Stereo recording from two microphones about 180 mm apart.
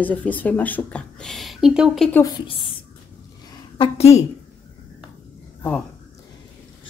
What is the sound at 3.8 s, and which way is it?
Speech, 35° left (ahead or behind).